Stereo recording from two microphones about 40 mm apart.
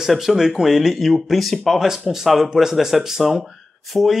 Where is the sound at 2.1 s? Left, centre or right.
Centre.